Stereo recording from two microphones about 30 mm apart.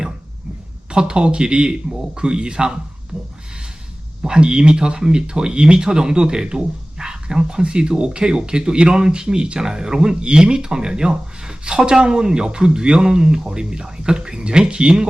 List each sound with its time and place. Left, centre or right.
0.9 s speech: right
4.2 s speech: right